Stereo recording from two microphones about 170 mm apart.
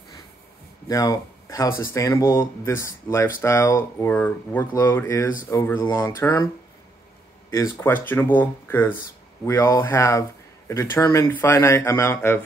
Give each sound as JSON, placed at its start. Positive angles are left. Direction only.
{"t": 0.8, "sound": "speech", "side_deg": 20}
{"t": 7.5, "sound": "speech", "side_deg": 15}